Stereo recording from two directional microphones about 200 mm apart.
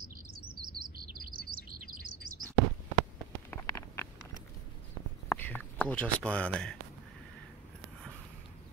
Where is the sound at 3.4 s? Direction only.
15° left (ahead or behind).